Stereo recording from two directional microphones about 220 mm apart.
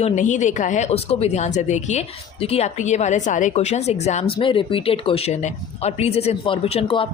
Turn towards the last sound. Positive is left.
turn(degrees=25)  # may be behind; listen again after turning